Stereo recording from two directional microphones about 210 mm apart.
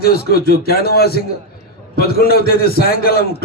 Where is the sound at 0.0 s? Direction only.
50° left (ahead or behind).